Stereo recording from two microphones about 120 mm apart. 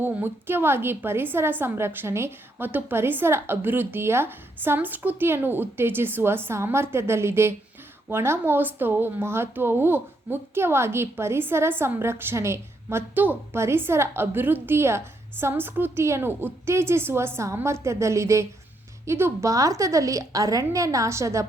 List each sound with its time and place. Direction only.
0.0 s speech: 15° right (ahead or behind)